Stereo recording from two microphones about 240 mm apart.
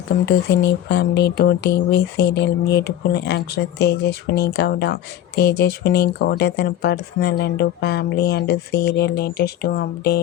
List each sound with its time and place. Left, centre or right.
0.3 s speech: left